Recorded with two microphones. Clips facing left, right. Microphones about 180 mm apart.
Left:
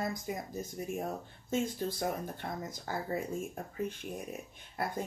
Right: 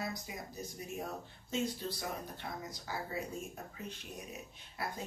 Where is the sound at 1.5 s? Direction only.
50° left (ahead or behind).